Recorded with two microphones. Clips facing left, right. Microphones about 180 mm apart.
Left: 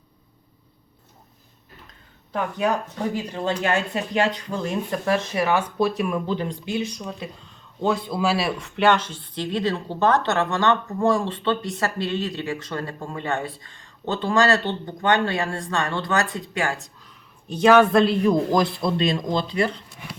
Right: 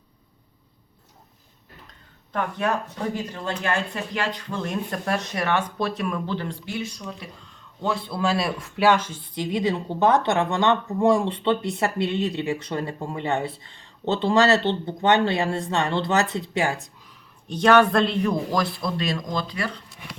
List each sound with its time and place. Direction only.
2.3 s speech: 10° left (ahead or behind)
8.6 s a woman's voice: 5° right (ahead or behind)
17.5 s a man's voice: 5° left (ahead or behind)
18.5 s speech: 20° left (ahead or behind)